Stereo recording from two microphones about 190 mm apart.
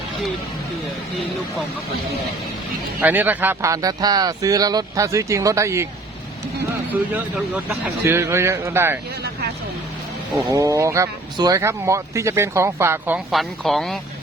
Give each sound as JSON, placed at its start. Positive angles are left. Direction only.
{"t": 3.0, "sound": "speech", "side_deg": -10}
{"t": 7.1, "sound": "speech", "side_deg": -10}
{"t": 10.5, "sound": "speech", "side_deg": -15}